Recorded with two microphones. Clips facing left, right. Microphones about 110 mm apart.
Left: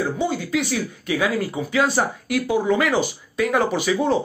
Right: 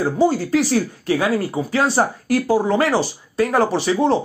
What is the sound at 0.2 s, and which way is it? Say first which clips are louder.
Speech: right 6 dB; 40° right (ahead or behind).